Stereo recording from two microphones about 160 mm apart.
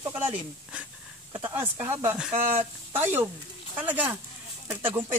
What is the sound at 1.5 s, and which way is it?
Speech, 15° right (ahead or behind).